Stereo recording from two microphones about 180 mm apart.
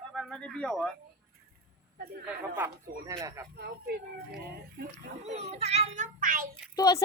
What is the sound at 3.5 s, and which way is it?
Speech, 60° right (ahead or behind).